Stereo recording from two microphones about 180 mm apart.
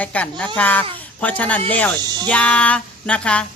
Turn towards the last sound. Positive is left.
turn(degrees=5)  # may be behind; listen again after turning